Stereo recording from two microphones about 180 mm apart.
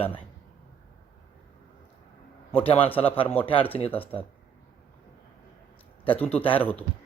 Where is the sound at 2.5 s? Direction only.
30° left (ahead or behind).